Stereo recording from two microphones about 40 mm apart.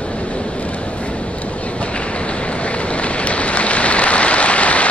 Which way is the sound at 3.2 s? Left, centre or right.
Left.